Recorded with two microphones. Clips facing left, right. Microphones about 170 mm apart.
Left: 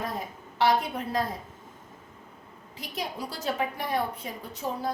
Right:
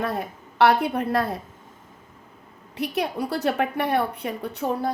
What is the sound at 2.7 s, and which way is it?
A woman's voice, 65° right (ahead or behind).